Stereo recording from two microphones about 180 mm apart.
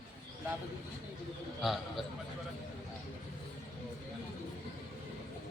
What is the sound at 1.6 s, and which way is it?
Speech, centre (ahead or behind).